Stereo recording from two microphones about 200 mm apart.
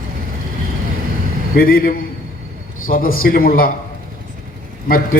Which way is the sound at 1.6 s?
45° left (ahead or behind).